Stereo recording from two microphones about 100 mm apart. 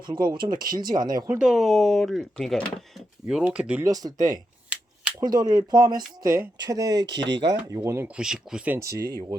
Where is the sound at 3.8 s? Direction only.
40° right (ahead or behind).